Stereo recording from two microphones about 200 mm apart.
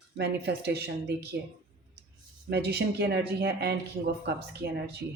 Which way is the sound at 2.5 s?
55° right (ahead or behind).